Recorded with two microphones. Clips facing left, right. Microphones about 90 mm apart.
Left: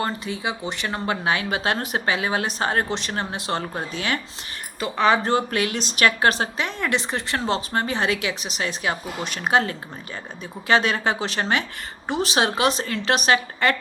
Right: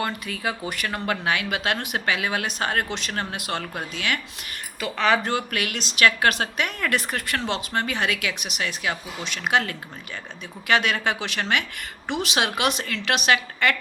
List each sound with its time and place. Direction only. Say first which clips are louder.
0.0 s a woman's voice: left 1 dB; 25° left (ahead or behind)